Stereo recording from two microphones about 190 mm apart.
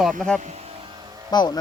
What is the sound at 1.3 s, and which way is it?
Speech, 20° left (ahead or behind).